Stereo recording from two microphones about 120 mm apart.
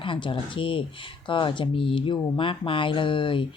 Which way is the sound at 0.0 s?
45° left (ahead or behind).